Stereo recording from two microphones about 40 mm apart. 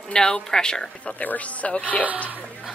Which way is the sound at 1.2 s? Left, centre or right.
Left.